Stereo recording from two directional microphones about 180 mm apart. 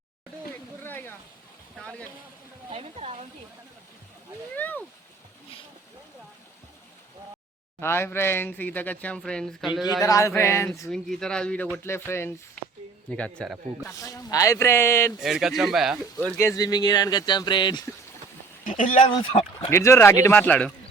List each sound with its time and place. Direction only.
0.9 s a sound: 10° left (ahead or behind)
2.6 s a woman's voice: 35° right (ahead or behind)
4.5 s speech: 10° left (ahead or behind)
7.8 s speech: 15° left (ahead or behind)
10.0 s speech: 15° left (ahead or behind)
10.8 s speech: 5° left (ahead or behind)
12.6 s a sound: 5° left (ahead or behind)
13.1 s speech: 5° left (ahead or behind)
14.0 s speech: 20° left (ahead or behind)
15.2 s speech: centre (ahead or behind); by 17.8 s 25° left (ahead or behind)
18.8 s speech: 45° left (ahead or behind)
19.0 s speech: 30° left (ahead or behind)
19.7 s speech: 15° left (ahead or behind)